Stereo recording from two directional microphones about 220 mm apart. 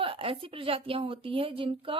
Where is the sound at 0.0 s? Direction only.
25° right (ahead or behind).